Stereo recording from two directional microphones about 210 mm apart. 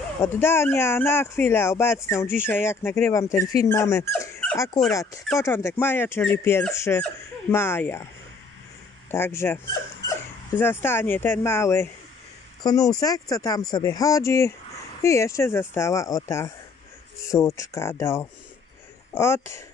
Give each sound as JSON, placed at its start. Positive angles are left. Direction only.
{"t": 0.2, "sound": "speech", "side_deg": 10}
{"t": 9.1, "sound": "speech", "side_deg": 10}